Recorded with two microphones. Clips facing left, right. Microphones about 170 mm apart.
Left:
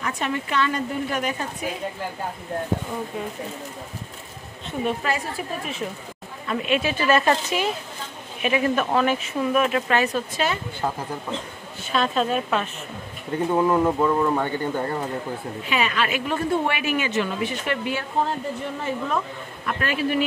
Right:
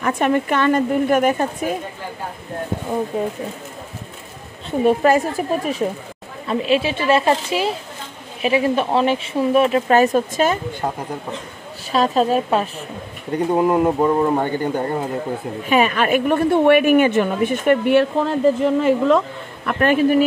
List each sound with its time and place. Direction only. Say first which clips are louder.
0.0 s a woman's voice: right 9 dB; 50° right (ahead or behind)
4.6 s speech: right 10 dB; 45° right (ahead or behind)
6.4 s speech: right 5 dB; 30° right (ahead or behind)
11.9 s speech: right 6 dB; 35° right (ahead or behind)
13.5 s speech: right 3 dB; 15° right (ahead or behind)
15.7 s a woman's voice: right 8 dB; 45° right (ahead or behind)